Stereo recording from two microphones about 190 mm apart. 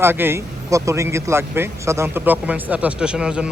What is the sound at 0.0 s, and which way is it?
Speech, 10° right (ahead or behind).